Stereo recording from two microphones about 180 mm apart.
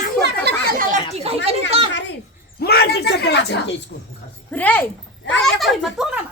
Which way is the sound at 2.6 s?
60° left (ahead or behind).